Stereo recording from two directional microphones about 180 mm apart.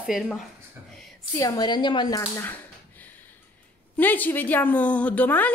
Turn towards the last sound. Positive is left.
turn(degrees=10)  # may be behind; listen again after turning